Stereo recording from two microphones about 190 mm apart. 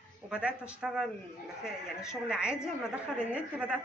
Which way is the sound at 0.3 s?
5° right (ahead or behind).